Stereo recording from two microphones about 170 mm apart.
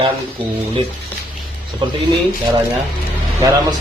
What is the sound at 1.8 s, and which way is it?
Speech, 30° right (ahead or behind).